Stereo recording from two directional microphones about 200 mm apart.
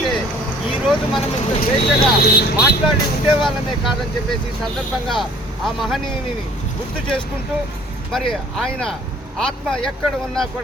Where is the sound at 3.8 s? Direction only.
Centre (ahead or behind).